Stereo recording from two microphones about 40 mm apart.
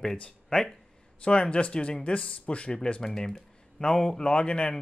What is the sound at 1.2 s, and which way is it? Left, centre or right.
Speech, left.